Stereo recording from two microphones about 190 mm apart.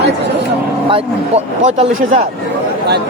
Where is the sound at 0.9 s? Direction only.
30° right (ahead or behind).